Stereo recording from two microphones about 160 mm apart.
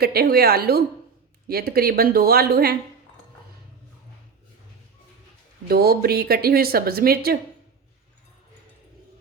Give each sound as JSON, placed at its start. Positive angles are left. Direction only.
{"t": 0.0, "sound": "a woman's voice", "side_deg": -75}
{"t": 5.6, "sound": "a woman's voice", "side_deg": -75}